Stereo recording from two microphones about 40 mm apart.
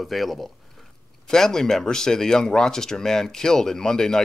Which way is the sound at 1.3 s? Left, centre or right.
Centre.